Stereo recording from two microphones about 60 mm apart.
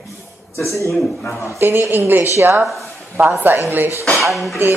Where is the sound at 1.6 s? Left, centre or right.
Right.